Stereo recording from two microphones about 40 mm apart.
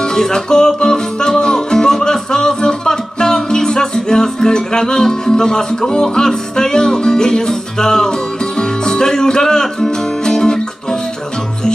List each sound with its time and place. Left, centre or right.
0.1 s music: centre